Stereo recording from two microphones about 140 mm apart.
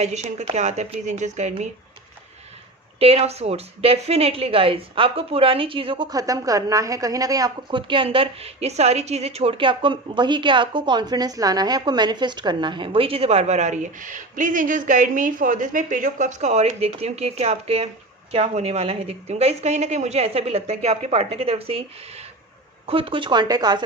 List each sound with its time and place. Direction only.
0.0 s a woman's voice: 55° right (ahead or behind)
3.0 s a woman's voice: 45° right (ahead or behind); by 23.8 s 30° right (ahead or behind)